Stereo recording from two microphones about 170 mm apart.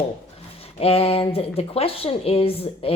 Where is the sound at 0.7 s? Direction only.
35° left (ahead or behind).